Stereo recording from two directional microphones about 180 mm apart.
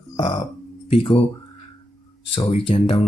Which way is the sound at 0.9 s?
30° left (ahead or behind).